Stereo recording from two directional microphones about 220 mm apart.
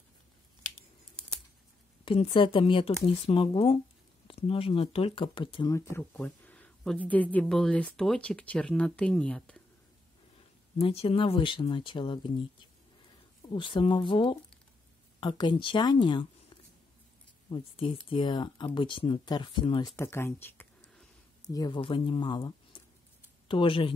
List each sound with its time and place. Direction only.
2.0 s speech: 25° left (ahead or behind); by 9.6 s 5° left (ahead or behind)
10.8 s speech: 25° left (ahead or behind)
13.5 s speech: 25° left (ahead or behind)
20.0 s a sound: 10° left (ahead or behind)
21.5 s speech: 20° left (ahead or behind)